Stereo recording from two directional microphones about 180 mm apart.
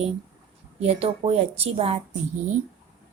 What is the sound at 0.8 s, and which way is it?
A woman's voice, 35° right (ahead or behind).